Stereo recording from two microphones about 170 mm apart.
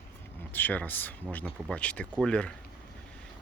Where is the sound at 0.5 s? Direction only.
10° left (ahead or behind).